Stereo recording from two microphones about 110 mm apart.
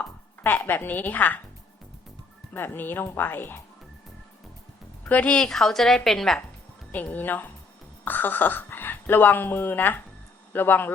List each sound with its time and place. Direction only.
0.0 s speech: 15° left (ahead or behind)
2.5 s speech: 20° left (ahead or behind)
5.0 s a woman's voice: 15° left (ahead or behind)
6.9 s a woman's voice: 15° left (ahead or behind)